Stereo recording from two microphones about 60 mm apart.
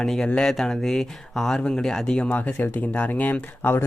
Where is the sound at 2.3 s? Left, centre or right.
Left.